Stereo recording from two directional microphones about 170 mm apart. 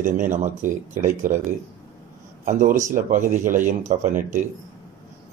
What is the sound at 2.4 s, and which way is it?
Speech, 50° right (ahead or behind).